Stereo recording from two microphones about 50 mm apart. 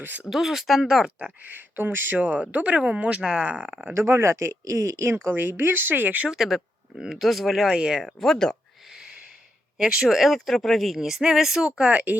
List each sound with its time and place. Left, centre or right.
0.3 s speech: centre
1.4 s speech: right
2.1 s speech: right
2.7 s speech: centre
3.9 s speech: right
5.3 s speech: right
6.2 s speech: centre
8.0 s speech: centre
8.9 s a sound: centre
9.7 s speech: centre
10.1 s speech: centre
11.9 s speech: right